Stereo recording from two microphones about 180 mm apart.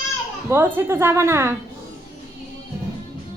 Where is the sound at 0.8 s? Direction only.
15° right (ahead or behind).